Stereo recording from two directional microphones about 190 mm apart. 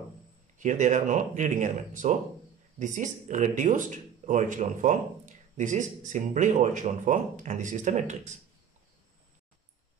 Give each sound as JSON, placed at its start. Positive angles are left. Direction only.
{"t": 0.6, "sound": "speech", "side_deg": -40}